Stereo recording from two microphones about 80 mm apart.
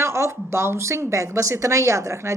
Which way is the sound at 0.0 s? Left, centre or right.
Right.